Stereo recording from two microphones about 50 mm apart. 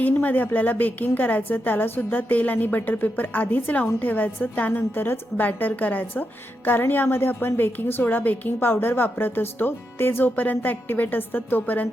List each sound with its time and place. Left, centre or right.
0.0 s a woman's voice: left
5.5 s a woman's voice: left
6.7 s a woman's voice: left